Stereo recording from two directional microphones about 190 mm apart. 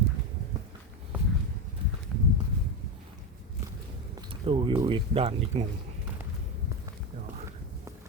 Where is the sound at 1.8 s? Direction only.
25° right (ahead or behind).